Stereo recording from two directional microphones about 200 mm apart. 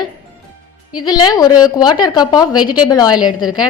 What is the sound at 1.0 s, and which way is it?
A woman's voice, 20° left (ahead or behind).